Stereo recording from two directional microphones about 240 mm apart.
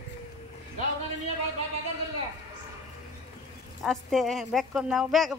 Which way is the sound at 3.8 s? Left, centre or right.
Centre.